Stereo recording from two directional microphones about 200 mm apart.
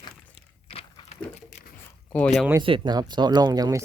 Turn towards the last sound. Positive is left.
turn(degrees=-20)  # may be behind; listen again after turning